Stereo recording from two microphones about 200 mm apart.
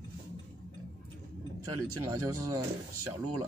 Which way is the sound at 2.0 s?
15° right (ahead or behind).